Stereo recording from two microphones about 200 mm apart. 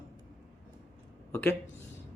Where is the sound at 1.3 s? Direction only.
10° left (ahead or behind).